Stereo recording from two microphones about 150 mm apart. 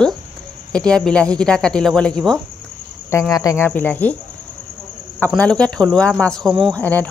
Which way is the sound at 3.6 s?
10° left (ahead or behind).